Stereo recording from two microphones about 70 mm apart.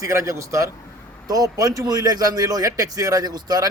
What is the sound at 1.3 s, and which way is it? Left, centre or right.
A man's voice, right.